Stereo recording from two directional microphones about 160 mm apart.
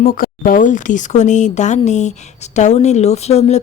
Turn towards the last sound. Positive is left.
turn(degrees=40)  # may be behind; listen again after turning